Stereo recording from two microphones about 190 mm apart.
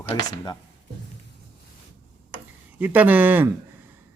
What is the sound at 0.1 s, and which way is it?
Speech, 20° left (ahead or behind).